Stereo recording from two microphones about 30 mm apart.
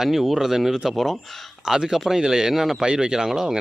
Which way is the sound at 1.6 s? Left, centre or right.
Centre.